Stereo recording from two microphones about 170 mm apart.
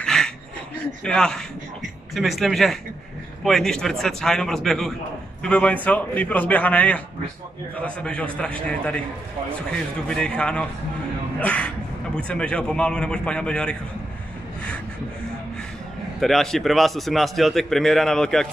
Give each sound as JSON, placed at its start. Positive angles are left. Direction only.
{"t": 0.0, "sound": "a sound", "side_deg": 5}
{"t": 1.0, "sound": "a man's voice", "side_deg": 5}
{"t": 16.2, "sound": "a man's voice", "side_deg": 0}